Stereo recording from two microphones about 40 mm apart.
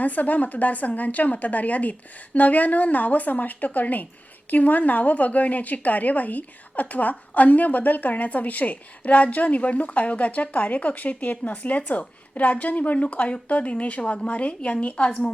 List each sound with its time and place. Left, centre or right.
0.0 s speech: left